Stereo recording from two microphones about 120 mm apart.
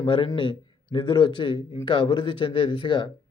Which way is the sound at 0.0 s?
45° left (ahead or behind).